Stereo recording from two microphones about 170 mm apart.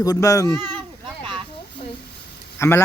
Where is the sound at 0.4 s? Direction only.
25° right (ahead or behind).